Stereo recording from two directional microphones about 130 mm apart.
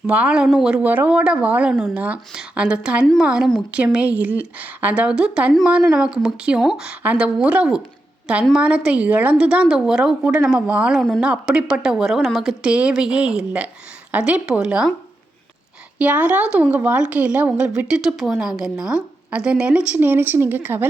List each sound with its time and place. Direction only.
0.1 s a woman's voice: 10° right (ahead or behind)
16.0 s a woman's voice: 10° right (ahead or behind)